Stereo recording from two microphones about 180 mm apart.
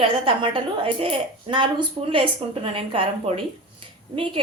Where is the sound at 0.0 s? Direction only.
30° right (ahead or behind).